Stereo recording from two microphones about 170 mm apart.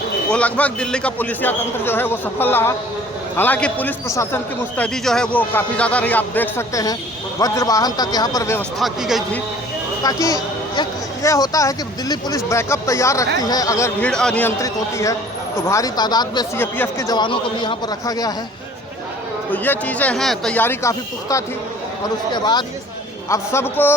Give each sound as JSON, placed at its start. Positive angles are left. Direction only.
{"t": 0.3, "sound": "a man's voice", "side_deg": 5}
{"t": 4.8, "sound": "a man's voice", "side_deg": 5}
{"t": 8.8, "sound": "speech", "side_deg": 0}
{"t": 10.0, "sound": "a man's voice", "side_deg": 20}
{"t": 14.1, "sound": "speech", "side_deg": 5}
{"t": 14.6, "sound": "speech", "side_deg": 20}
{"t": 16.6, "sound": "speech", "side_deg": 10}
{"t": 19.5, "sound": "a man's voice", "side_deg": 10}
{"t": 23.3, "sound": "a man's voice", "side_deg": 15}